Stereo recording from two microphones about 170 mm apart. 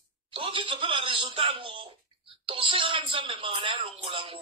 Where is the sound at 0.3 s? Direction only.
30° right (ahead or behind).